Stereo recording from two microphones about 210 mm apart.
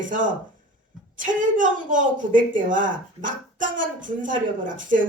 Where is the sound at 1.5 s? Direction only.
40° right (ahead or behind).